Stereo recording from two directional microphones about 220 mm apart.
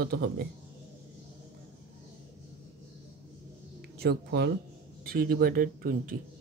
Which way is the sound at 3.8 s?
45° right (ahead or behind).